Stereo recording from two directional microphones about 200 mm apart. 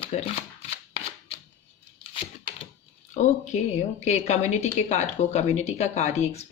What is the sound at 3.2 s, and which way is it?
Speech, 35° left (ahead or behind).